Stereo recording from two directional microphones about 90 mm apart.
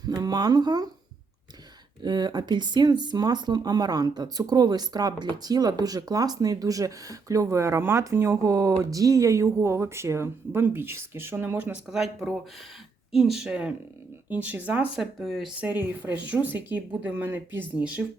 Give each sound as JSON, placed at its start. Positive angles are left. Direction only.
{"t": 0.0, "sound": "speech", "side_deg": -45}
{"t": 2.0, "sound": "speech", "side_deg": -55}
{"t": 8.4, "sound": "speech", "side_deg": -35}
{"t": 11.5, "sound": "speech", "side_deg": -15}
{"t": 15.2, "sound": "speech", "side_deg": 0}
{"t": 15.6, "sound": "speech", "side_deg": -20}